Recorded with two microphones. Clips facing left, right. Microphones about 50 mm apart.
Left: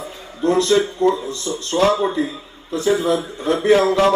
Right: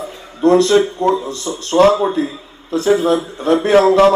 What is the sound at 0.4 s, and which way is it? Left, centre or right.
A man's voice, right.